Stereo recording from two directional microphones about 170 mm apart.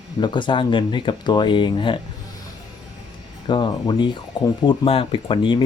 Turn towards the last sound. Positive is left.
turn(degrees=30)  # may be behind; listen again after turning